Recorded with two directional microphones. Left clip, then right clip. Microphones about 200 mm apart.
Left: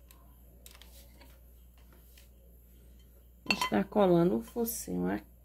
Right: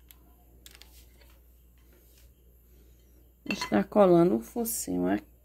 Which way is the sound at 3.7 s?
25° right (ahead or behind).